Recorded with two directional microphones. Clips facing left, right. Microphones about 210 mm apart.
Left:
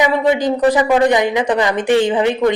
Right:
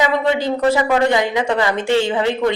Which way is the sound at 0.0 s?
15° left (ahead or behind).